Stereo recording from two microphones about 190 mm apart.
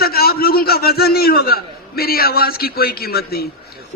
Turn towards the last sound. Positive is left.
turn(degrees=55)  # may be behind; listen again after turning